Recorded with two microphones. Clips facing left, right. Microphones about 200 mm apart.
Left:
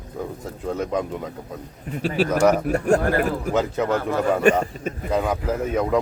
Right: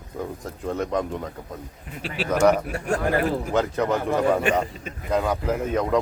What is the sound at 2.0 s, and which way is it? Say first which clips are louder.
Speech: left 8 dB; 45° left (ahead or behind).